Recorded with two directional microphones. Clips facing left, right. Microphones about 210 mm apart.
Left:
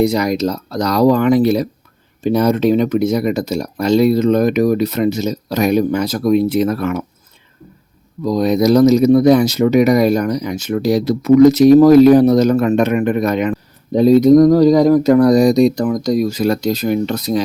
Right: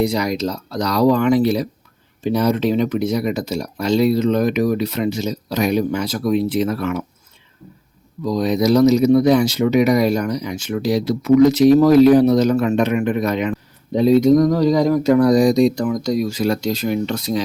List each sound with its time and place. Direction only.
0.0 s speech: 45° left (ahead or behind)
8.2 s speech: 45° left (ahead or behind)
13.9 s speech: 40° left (ahead or behind)